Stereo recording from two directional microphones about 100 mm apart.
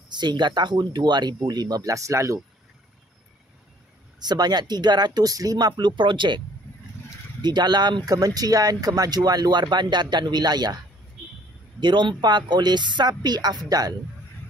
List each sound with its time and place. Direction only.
0.1 s speech: 50° right (ahead or behind); by 2.4 s 30° right (ahead or behind)
4.2 s speech: 45° right (ahead or behind)
7.4 s speech: 45° right (ahead or behind)
11.8 s speech: 50° right (ahead or behind)